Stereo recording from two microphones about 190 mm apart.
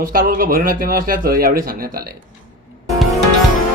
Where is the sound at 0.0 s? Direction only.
50° right (ahead or behind).